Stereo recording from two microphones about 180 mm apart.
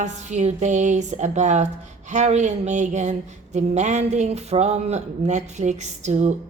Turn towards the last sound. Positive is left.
turn(degrees=-40)  # may be behind; listen again after turning